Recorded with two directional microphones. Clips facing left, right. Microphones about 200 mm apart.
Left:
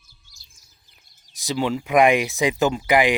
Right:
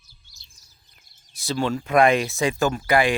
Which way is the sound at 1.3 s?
15° left (ahead or behind).